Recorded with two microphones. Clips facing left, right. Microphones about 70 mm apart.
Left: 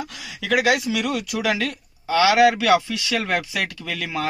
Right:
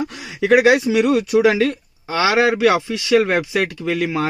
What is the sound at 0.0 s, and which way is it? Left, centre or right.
Speech, right.